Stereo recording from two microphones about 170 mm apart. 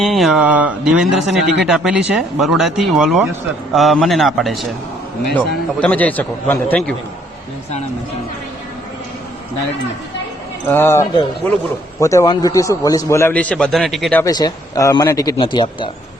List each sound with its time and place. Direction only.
0.0 s speech: centre (ahead or behind)
5.8 s a man's voice: 10° left (ahead or behind)
10.7 s a man's voice: 15° left (ahead or behind)
14.3 s speech: 25° left (ahead or behind)